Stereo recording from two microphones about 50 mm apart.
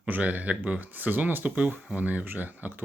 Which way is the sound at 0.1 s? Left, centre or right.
Right.